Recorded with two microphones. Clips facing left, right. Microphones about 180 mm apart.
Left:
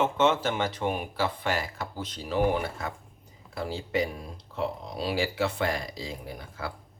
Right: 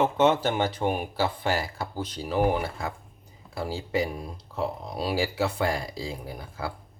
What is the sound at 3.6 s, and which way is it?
Speech, 35° right (ahead or behind).